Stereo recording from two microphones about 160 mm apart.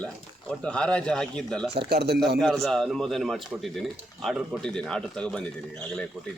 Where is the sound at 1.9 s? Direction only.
90° right.